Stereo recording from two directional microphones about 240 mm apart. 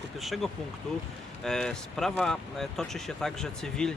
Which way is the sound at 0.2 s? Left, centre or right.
Centre.